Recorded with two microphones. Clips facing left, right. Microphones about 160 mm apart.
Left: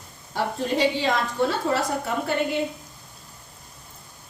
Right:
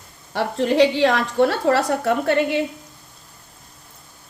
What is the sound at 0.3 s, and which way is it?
A woman's voice, 75° right (ahead or behind).